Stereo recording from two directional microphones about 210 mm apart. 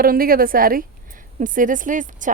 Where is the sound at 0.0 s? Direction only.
45° right (ahead or behind).